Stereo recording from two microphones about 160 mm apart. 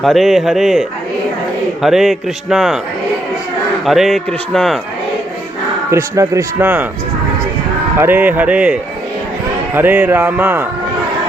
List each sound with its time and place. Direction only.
0.0 s a man's voice: centre (ahead or behind)
3.8 s a man's voice: centre (ahead or behind)
5.9 s speech: 20° right (ahead or behind)
7.9 s speech: 15° right (ahead or behind)